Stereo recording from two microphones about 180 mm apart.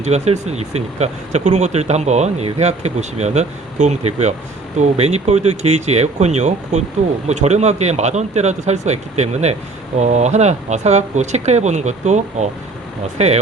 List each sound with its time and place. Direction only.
0.0 s speech: 40° right (ahead or behind)